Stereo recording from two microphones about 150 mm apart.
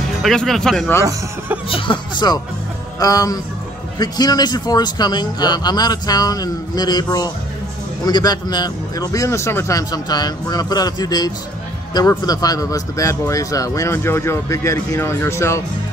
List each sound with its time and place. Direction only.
0.2 s speech: 5° left (ahead or behind)
1.7 s speech: 35° left (ahead or behind); by 15.6 s 20° left (ahead or behind)